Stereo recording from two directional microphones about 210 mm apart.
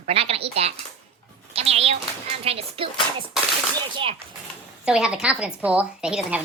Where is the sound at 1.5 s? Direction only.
30° right (ahead or behind).